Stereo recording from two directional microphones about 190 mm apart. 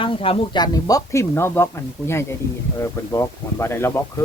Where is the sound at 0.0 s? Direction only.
30° left (ahead or behind); by 4.0 s 15° left (ahead or behind).